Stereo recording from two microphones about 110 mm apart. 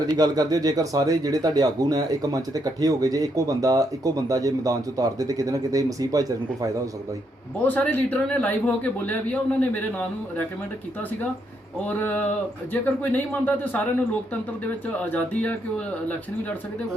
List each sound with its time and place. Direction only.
0.2 s speech: 35° right (ahead or behind)
7.6 s a man's voice: 15° left (ahead or behind)
11.9 s a man's voice: 15° left (ahead or behind)
14.9 s a man's voice: 15° left (ahead or behind)